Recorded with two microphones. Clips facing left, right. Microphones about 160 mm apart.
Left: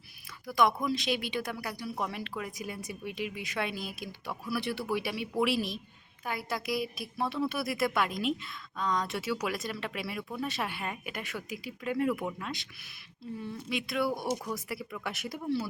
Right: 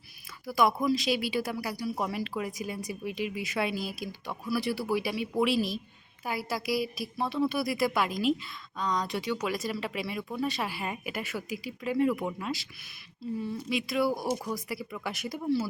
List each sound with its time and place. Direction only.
0.4 s speech: 5° right (ahead or behind)